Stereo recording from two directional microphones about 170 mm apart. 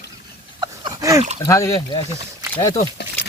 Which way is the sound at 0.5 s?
20° right (ahead or behind).